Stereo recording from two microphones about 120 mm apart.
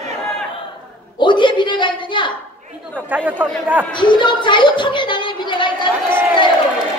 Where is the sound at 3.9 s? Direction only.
40° left (ahead or behind).